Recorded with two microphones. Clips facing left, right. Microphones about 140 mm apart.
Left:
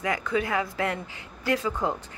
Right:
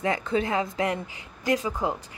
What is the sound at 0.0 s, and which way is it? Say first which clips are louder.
A woman's voice: right 2 dB; 30° right (ahead or behind).